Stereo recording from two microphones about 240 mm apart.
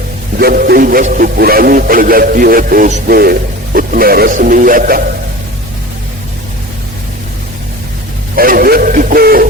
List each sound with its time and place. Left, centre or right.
0.3 s speech: right
8.4 s speech: right